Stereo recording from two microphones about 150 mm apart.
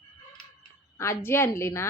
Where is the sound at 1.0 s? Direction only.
15° left (ahead or behind).